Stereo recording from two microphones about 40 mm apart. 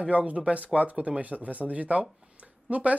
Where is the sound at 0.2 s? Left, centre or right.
Right.